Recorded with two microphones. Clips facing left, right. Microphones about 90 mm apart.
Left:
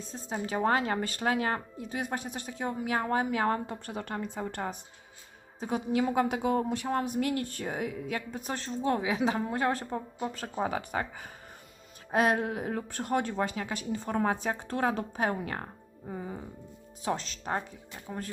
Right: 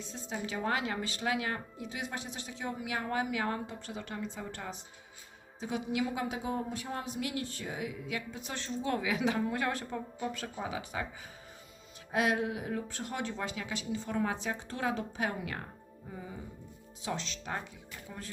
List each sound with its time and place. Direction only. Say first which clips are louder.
0.0 s a woman's voice: left 3 dB; 40° left (ahead or behind)
12.1 s a woman's voice: left 4 dB; 40° left (ahead or behind)